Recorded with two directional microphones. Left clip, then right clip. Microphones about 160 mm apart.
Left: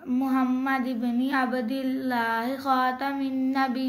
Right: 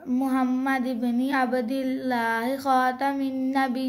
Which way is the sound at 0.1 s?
30° right (ahead or behind).